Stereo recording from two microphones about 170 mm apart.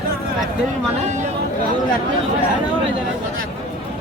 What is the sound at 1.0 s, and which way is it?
Speech, 45° right (ahead or behind).